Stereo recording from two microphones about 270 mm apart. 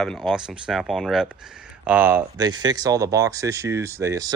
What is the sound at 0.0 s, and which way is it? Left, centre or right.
Speech, centre.